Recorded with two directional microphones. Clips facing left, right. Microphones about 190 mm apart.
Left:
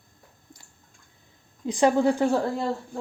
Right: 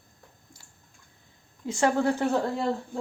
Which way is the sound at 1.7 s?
15° left (ahead or behind).